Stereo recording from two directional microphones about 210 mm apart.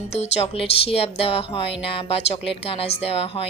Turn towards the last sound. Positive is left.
turn(degrees=30)  # may be behind; listen again after turning